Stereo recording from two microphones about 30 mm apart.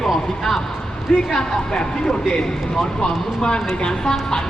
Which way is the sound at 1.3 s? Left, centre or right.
Left.